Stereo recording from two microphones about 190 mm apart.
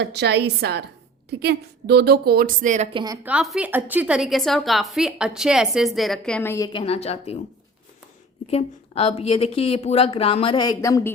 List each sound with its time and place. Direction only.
0.0 s a woman's voice: 60° right (ahead or behind); by 2.9 s 40° right (ahead or behind)
2.9 s speech: 20° right (ahead or behind)
3.2 s a woman's voice: 5° right (ahead or behind); by 6.7 s 15° left (ahead or behind)
6.7 s a woman's voice: 30° left (ahead or behind)
8.4 s a woman's voice: 30° left (ahead or behind); by 11.1 s 15° left (ahead or behind)